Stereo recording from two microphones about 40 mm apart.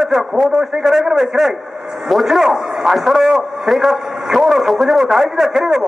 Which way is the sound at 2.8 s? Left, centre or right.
Centre.